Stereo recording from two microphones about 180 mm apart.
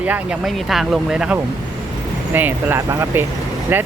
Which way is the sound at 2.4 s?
10° right (ahead or behind).